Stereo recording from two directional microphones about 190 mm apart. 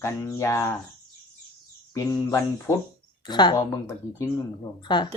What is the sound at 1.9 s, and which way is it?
Speech, 15° left (ahead or behind).